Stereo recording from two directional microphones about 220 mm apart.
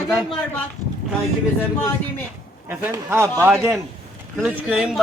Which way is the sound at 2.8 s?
10° right (ahead or behind).